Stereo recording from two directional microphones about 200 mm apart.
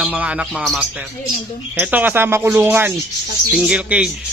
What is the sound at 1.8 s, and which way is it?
Speech, 10° right (ahead or behind).